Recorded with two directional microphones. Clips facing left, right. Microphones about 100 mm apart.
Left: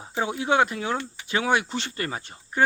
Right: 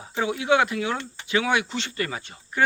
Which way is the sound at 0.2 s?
35° left (ahead or behind).